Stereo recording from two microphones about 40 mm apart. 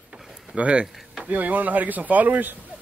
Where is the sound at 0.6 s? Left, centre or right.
Right.